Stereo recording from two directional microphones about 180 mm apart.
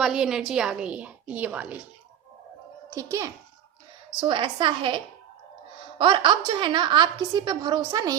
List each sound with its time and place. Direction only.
0.0 s a woman's voice: 5° right (ahead or behind)
2.9 s a child's voice: 15° right (ahead or behind)